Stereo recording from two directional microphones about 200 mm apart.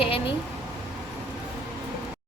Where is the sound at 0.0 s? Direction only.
25° left (ahead or behind).